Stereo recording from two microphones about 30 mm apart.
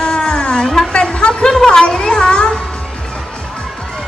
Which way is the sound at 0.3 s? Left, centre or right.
Left.